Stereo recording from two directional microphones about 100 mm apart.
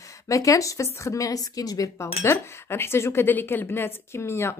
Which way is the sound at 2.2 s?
25° left (ahead or behind).